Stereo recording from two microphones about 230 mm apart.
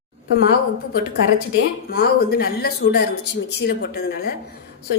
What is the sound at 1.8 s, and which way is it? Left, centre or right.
A woman's voice, left.